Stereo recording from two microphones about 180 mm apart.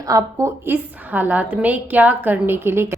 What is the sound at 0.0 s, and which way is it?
A woman's voice, 20° right (ahead or behind).